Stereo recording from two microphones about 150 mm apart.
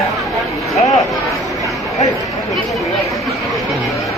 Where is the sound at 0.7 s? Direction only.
20° left (ahead or behind).